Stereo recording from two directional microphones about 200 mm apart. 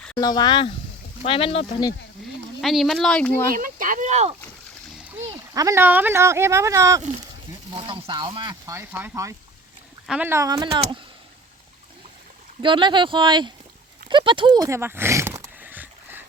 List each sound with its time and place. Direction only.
0.2 s speech: 20° left (ahead or behind)
2.6 s speech: centre (ahead or behind)
3.5 s speech: 40° right (ahead or behind)
5.5 s speech: 15° right (ahead or behind)
7.7 s speech: 25° right (ahead or behind)
12.6 s speech: 25° right (ahead or behind)
14.1 s a sound: 25° right (ahead or behind)